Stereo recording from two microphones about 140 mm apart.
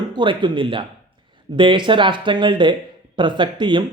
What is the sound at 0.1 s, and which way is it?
Speech, 35° right (ahead or behind).